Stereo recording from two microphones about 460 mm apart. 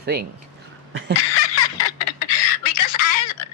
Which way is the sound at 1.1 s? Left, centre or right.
Left.